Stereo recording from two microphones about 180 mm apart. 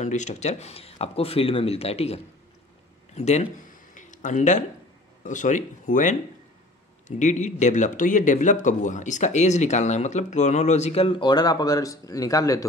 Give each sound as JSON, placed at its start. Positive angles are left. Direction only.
{"t": 0.0, "sound": "speech", "side_deg": 40}
{"t": 3.2, "sound": "speech", "side_deg": 40}